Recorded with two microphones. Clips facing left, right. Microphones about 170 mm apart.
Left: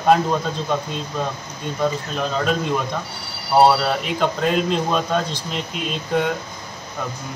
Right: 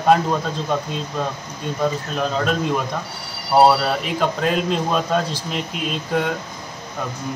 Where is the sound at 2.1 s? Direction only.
Centre (ahead or behind).